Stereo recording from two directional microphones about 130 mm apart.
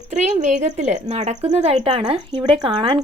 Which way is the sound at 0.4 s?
60° right (ahead or behind).